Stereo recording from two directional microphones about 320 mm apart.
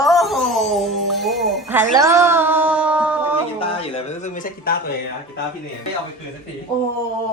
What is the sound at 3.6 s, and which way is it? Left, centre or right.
Speech, centre.